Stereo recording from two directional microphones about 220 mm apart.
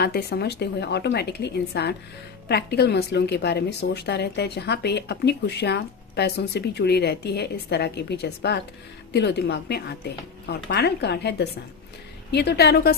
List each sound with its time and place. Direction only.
0.0 s a woman's voice: 45° left (ahead or behind)